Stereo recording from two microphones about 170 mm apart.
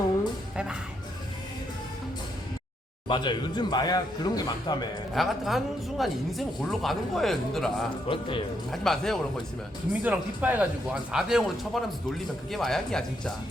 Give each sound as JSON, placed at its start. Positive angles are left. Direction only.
{"t": 0.5, "sound": "speech", "side_deg": -5}
{"t": 3.1, "sound": "speech", "side_deg": 25}
{"t": 5.1, "sound": "speech", "side_deg": 0}
{"t": 8.0, "sound": "speech", "side_deg": 30}
{"t": 8.7, "sound": "speech", "side_deg": 0}
{"t": 10.0, "sound": "speech", "side_deg": -10}